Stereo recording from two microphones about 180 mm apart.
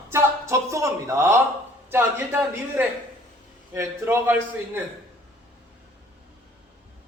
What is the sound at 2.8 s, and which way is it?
Speech, 10° right (ahead or behind).